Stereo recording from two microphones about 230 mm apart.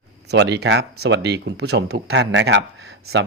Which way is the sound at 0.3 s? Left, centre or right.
Right.